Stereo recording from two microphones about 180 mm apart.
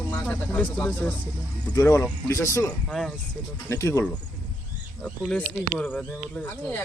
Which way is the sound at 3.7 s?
15° left (ahead or behind).